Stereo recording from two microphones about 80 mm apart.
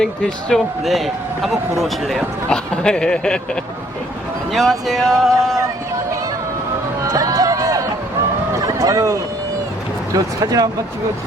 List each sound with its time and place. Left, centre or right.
0.0 s speech: centre
0.9 s speech: centre
7.0 s a sound: right
8.6 s speech: right